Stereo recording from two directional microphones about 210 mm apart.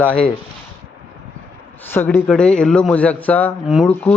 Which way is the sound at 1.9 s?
10° left (ahead or behind).